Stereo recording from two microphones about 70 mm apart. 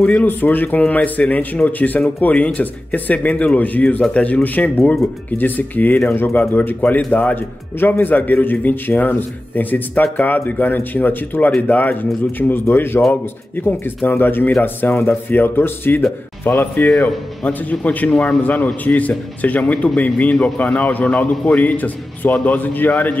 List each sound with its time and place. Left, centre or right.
0.0 s a man's voice: centre
16.9 s a man's voice: centre
17.5 s a man's voice: left